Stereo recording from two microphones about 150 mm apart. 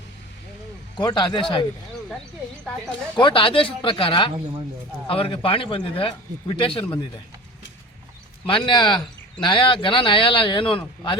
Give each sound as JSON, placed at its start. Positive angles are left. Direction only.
{"t": 0.9, "sound": "a man's voice", "side_deg": 30}
{"t": 3.2, "sound": "a man's voice", "side_deg": 35}
{"t": 8.4, "sound": "a man's voice", "side_deg": 35}